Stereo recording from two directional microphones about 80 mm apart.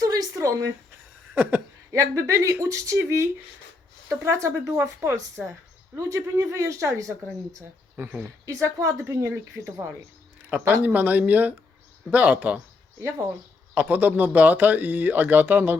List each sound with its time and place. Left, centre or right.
0.0 s a sound: right
1.3 s a sound: right
1.9 s speech: right
8.6 s speech: right
10.5 s speech: right
13.0 s speech: right
13.7 s speech: right